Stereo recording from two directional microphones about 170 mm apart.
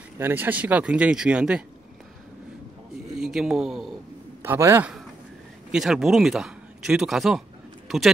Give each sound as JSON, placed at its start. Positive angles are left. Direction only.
{"t": 0.2, "sound": "speech", "side_deg": -10}
{"t": 3.2, "sound": "speech", "side_deg": -5}
{"t": 4.4, "sound": "a man's voice", "side_deg": -15}
{"t": 5.7, "sound": "speech", "side_deg": 0}